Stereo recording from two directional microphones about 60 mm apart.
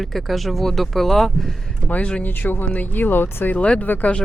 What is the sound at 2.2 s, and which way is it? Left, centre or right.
Speech, left.